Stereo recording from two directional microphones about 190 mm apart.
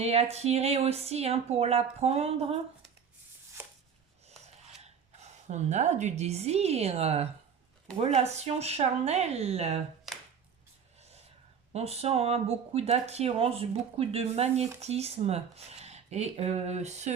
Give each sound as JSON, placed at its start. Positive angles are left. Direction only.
{"t": 0.0, "sound": "speech", "side_deg": -35}
{"t": 4.3, "sound": "a sound", "side_deg": -35}
{"t": 4.8, "sound": "speech", "side_deg": -35}
{"t": 11.7, "sound": "speech", "side_deg": -35}